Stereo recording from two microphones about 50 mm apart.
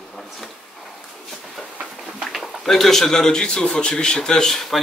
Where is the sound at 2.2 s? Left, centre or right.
Centre.